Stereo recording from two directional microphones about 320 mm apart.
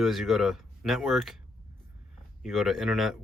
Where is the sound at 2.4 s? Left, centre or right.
Centre.